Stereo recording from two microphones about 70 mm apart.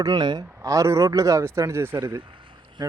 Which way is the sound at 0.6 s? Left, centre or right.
Right.